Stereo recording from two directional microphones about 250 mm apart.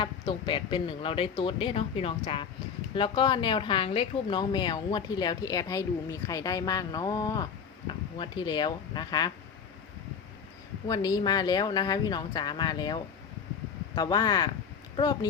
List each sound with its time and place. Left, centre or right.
0.0 s a woman's voice: centre
10.8 s a woman's voice: centre